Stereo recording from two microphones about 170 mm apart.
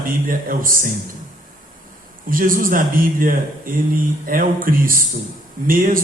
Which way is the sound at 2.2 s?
55° right (ahead or behind).